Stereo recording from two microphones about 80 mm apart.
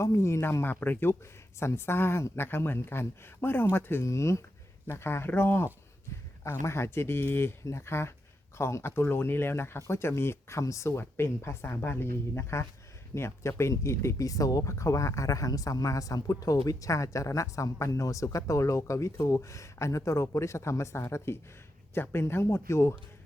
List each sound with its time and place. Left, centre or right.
0.0 s speech: left